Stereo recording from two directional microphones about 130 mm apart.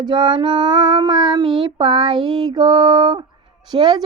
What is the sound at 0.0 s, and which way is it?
Child singing, 35° right (ahead or behind).